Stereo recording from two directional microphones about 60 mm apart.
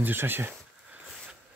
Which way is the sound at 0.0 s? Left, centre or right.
Right.